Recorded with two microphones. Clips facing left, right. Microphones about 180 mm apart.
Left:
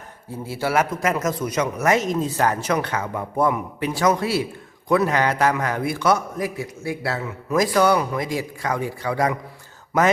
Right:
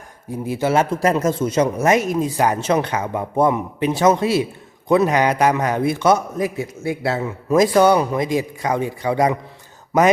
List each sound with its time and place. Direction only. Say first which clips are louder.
0.3 s a man's voice: right 5 dB; 15° right (ahead or behind)
2.0 s speech: right 3 dB; 15° right (ahead or behind)
2.6 s a man's voice: right 4 dB; 25° right (ahead or behind)